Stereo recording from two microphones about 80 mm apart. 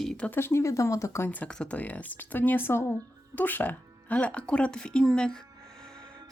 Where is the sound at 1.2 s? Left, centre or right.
Left.